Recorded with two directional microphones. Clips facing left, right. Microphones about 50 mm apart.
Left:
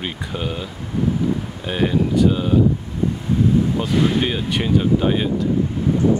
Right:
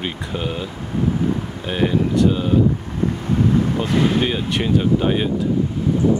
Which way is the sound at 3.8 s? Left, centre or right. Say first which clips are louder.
Even; centre.